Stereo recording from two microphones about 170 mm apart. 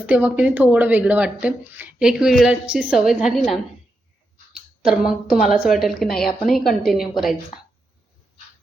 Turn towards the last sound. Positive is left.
turn(degrees=0)  # may be behind; listen again after turning